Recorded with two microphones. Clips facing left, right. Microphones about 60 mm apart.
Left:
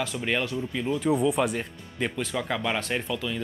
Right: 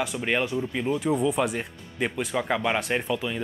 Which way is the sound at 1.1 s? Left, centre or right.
Centre.